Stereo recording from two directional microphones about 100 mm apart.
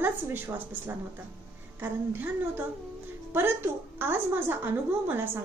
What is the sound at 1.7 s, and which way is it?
A woman's voice, 20° right (ahead or behind).